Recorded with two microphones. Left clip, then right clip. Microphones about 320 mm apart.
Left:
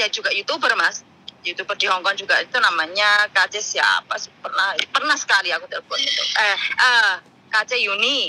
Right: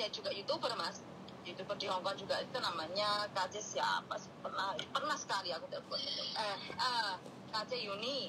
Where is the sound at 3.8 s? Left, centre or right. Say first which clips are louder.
Left 18 dB; left.